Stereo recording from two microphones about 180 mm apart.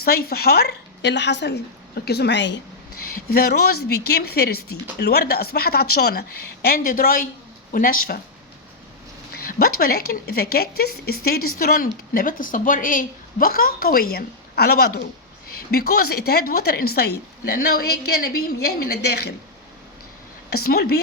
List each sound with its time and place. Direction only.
0.0 s a woman's voice: 60° left (ahead or behind); by 2.6 s 80° left
3.3 s a woman's voice: 60° left (ahead or behind)
9.5 s a woman's voice: 55° left (ahead or behind)
20.7 s speech: 60° left (ahead or behind)